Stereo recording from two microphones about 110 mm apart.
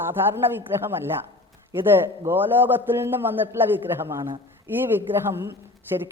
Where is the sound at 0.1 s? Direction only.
20° right (ahead or behind).